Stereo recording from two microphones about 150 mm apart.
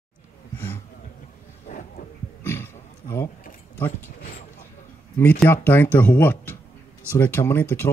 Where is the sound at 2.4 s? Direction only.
15° left (ahead or behind).